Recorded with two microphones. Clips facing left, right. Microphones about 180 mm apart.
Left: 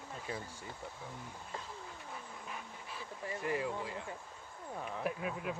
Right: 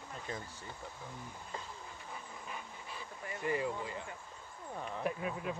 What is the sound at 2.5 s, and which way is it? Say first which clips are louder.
Dog: right 1 dB; centre (ahead or behind).